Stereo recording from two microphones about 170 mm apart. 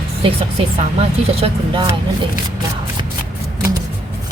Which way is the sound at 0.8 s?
35° right (ahead or behind).